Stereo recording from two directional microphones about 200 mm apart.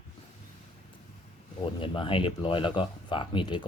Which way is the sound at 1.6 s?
25° left (ahead or behind).